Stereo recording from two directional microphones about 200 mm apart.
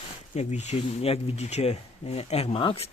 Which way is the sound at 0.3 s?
35° left (ahead or behind).